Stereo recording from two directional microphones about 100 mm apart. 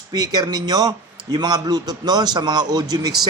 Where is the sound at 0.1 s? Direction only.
40° right (ahead or behind).